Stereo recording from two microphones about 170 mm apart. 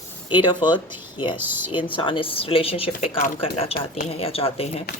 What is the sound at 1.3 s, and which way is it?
Speech, 10° right (ahead or behind).